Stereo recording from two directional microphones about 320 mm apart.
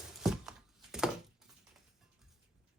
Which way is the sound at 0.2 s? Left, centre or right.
Centre.